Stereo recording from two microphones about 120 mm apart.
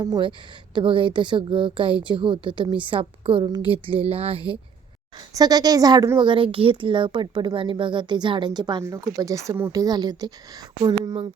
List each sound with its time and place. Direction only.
0.0 s speech: 40° right (ahead or behind)
5.3 s a woman's voice: 35° right (ahead or behind)
6.1 s a woman's voice: 45° right (ahead or behind)